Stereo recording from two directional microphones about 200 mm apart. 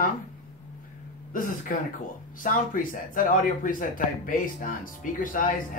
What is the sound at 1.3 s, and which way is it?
Speech, 40° left (ahead or behind).